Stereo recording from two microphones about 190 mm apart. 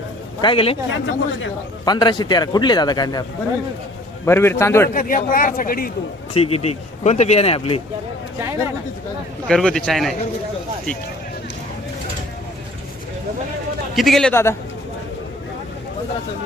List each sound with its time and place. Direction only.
0.4 s a man's voice: 30° left (ahead or behind)
0.9 s speech: 85° left
1.8 s a man's voice: 20° left (ahead or behind)
4.3 s a man's voice: 10° left (ahead or behind)
4.9 s speech: 45° left (ahead or behind)
6.3 s speech: 30° left (ahead or behind)
9.5 s a man's voice: centre (ahead or behind)
13.9 s a man's voice: centre (ahead or behind)